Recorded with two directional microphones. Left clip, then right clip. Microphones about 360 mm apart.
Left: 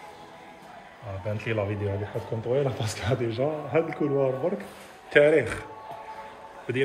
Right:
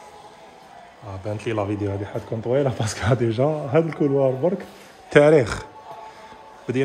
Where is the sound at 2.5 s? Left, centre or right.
Right.